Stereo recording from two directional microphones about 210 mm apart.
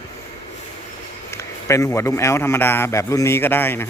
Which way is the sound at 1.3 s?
15° left (ahead or behind).